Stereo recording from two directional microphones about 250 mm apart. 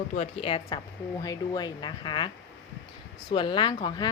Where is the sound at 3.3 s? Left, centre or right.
Centre.